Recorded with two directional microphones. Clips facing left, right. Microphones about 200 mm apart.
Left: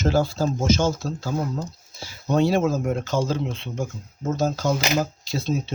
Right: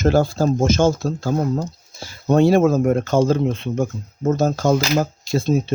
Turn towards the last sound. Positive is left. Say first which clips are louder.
# right 7 dB
turn(degrees=-50)  # may be behind; listen again after turning